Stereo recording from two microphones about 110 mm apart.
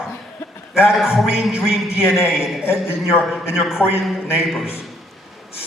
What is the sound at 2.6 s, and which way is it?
Speech, 20° left (ahead or behind).